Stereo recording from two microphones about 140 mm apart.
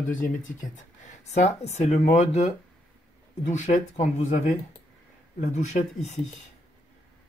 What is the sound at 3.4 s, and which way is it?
Speech, 60° left (ahead or behind).